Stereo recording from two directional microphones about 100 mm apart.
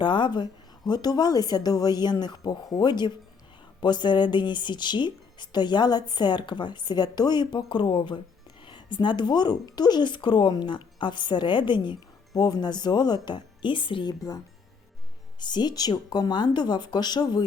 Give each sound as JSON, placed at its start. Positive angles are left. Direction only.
{"t": 0.0, "sound": "speech", "side_deg": 50}
{"t": 14.1, "sound": "speech", "side_deg": 40}